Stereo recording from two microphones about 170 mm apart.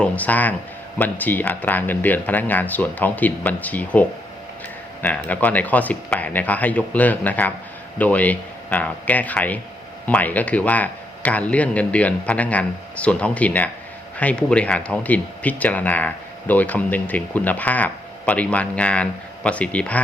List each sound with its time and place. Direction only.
0.0 s speech: 10° left (ahead or behind)
5.0 s speech: 10° left (ahead or behind)